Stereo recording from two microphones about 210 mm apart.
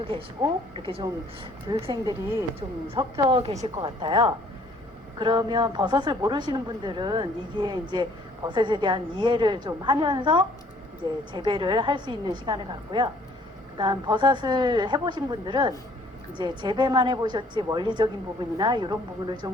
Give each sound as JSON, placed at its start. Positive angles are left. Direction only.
{"t": 0.8, "sound": "speech", "side_deg": -25}